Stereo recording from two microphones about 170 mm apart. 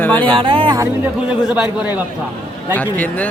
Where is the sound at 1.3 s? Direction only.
10° right (ahead or behind).